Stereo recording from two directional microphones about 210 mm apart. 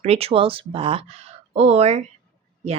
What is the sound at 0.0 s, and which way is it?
Speech, 30° right (ahead or behind).